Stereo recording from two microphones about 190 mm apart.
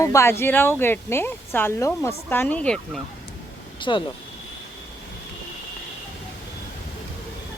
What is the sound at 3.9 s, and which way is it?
Speech, 25° left (ahead or behind).